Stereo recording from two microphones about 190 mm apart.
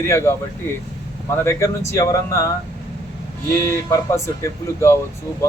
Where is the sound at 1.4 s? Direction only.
15° left (ahead or behind).